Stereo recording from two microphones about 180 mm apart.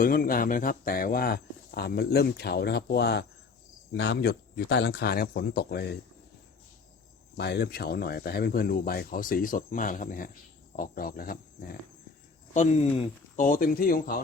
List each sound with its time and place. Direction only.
0.0 s speech: 55° left (ahead or behind)
7.3 s speech: 65° left (ahead or behind)
12.5 s speech: 35° left (ahead or behind); by 14.2 s 55° left (ahead or behind)